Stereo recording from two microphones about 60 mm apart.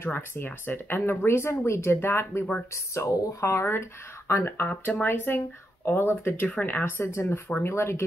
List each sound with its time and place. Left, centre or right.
0.0 s speech: left
2.7 s speech: left
4.3 s speech: left